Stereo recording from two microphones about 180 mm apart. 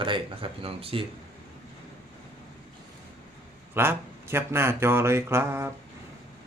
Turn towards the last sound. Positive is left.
turn(degrees=-15)  # may be behind; listen again after turning